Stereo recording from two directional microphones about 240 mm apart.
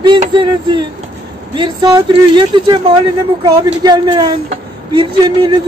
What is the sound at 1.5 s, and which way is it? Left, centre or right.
A man's voice, centre.